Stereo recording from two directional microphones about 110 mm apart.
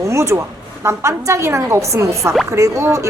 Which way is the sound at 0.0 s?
25° right (ahead or behind).